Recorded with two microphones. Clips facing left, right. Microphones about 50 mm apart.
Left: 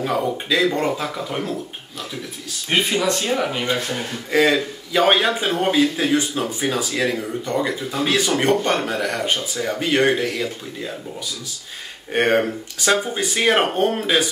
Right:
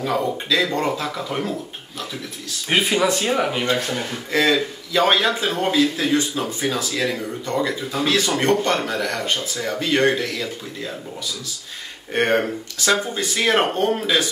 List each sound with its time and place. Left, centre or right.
0.0 s speech: centre
2.7 s speech: centre
4.3 s speech: centre
12.1 s speech: centre
13.0 s speech: centre